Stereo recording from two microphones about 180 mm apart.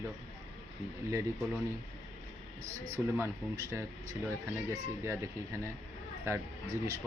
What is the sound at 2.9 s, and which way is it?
Speech, 15° right (ahead or behind).